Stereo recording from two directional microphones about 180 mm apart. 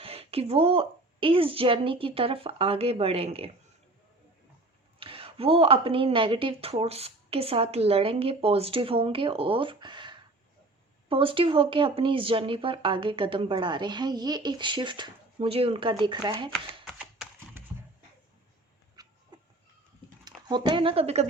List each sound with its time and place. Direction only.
0.0 s a woman's voice: 35° right (ahead or behind)
4.9 s a woman's voice: 30° right (ahead or behind)
16.8 s typing: centre (ahead or behind)
17.6 s a sound: 10° right (ahead or behind)
19.0 s dog: 20° right (ahead or behind)
20.2 s speech: 25° right (ahead or behind)